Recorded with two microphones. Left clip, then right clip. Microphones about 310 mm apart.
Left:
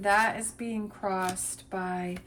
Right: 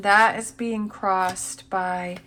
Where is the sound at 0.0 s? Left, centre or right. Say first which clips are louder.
Right 7 dB; centre.